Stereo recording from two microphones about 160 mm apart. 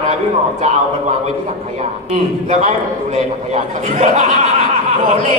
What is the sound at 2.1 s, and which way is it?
A man's voice, 40° right (ahead or behind).